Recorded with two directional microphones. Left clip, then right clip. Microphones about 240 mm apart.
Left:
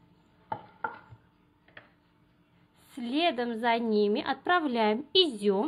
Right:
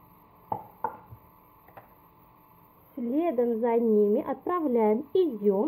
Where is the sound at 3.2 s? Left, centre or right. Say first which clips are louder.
Right 2 dB; left.